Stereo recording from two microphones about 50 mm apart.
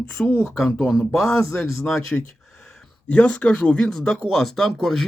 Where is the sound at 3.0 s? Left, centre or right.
Left.